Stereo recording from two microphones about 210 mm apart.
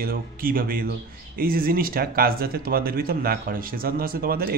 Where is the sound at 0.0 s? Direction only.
45° right (ahead or behind).